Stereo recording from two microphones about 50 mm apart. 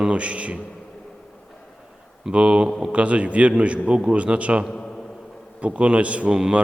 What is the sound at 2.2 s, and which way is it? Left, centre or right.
A man's voice, centre.